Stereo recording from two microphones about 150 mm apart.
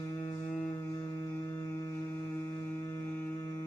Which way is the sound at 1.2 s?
20° left (ahead or behind).